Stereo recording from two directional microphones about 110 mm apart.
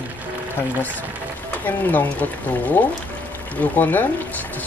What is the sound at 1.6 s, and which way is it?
Speech, 15° left (ahead or behind).